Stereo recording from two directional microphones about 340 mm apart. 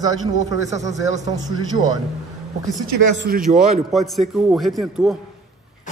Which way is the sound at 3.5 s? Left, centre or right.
Centre.